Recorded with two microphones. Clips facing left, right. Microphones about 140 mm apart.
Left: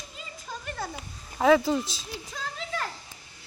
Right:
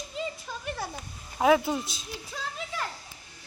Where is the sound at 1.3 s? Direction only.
10° right (ahead or behind).